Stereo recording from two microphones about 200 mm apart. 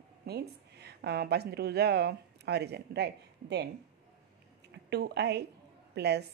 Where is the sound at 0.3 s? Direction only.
55° right (ahead or behind).